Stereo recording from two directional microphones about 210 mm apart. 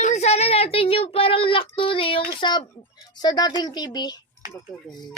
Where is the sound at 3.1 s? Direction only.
20° left (ahead or behind).